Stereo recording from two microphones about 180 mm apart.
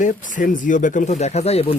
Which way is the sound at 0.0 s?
50° left (ahead or behind).